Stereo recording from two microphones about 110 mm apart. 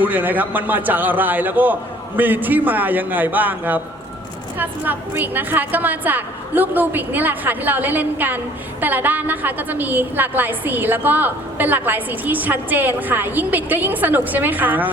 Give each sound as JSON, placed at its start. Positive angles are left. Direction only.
{"t": 0.0, "sound": "a woman's voice", "side_deg": -15}